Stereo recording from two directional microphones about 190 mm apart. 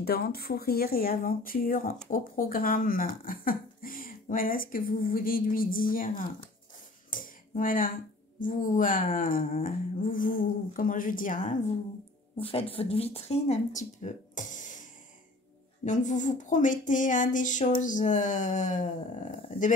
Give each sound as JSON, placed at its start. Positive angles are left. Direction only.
{"t": 0.0, "sound": "speech", "side_deg": 55}
{"t": 7.1, "sound": "a sound", "side_deg": 45}
{"t": 8.4, "sound": "speech", "side_deg": 45}
{"t": 12.4, "sound": "speech", "side_deg": 30}
{"t": 14.3, "sound": "music", "side_deg": 40}
{"t": 15.8, "sound": "speech", "side_deg": 40}